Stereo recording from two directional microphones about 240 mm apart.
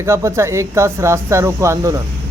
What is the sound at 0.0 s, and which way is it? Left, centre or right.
Speech, centre.